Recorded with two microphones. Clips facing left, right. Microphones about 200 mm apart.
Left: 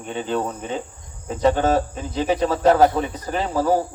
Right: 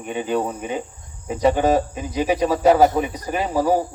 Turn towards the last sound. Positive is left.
turn(degrees=-10)  # may be behind; listen again after turning